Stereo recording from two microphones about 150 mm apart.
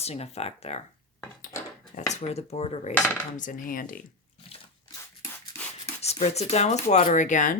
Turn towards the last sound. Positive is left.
turn(degrees=55)  # may be behind; listen again after turning